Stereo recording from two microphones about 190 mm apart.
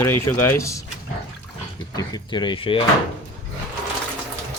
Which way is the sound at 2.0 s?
20° left (ahead or behind).